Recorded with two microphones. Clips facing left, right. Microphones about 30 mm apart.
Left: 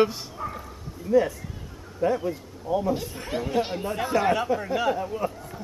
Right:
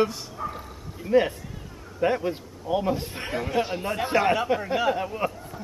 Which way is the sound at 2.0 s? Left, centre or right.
Right.